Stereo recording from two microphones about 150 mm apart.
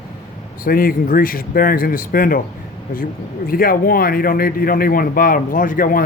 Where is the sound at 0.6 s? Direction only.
75° left (ahead or behind).